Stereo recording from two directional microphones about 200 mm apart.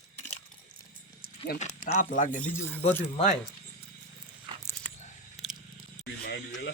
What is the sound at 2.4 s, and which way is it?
Speech, 10° left (ahead or behind).